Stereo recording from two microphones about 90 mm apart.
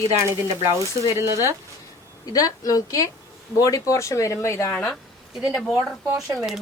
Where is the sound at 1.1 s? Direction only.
30° right (ahead or behind).